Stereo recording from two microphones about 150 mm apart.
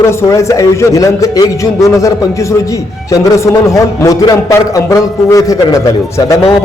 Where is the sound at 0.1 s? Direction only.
20° left (ahead or behind).